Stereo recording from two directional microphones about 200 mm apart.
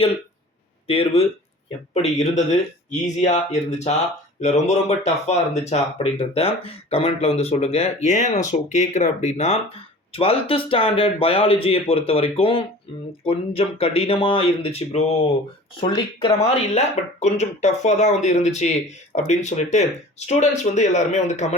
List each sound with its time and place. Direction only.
0.9 s speech: 30° left (ahead or behind)
16.4 s speech: 35° left (ahead or behind)